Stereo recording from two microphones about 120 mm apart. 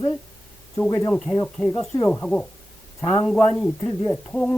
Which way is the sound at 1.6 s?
5° left (ahead or behind).